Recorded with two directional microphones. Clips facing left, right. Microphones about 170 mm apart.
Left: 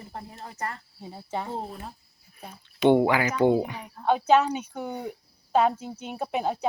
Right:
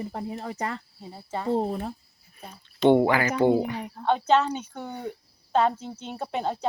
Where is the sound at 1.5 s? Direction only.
65° right (ahead or behind).